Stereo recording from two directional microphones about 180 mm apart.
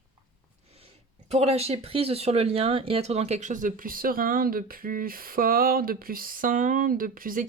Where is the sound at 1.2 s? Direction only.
35° right (ahead or behind); by 7.5 s 50° right (ahead or behind).